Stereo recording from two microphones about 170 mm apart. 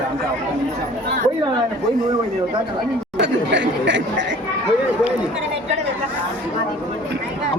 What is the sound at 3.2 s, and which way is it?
Speech, 90° right.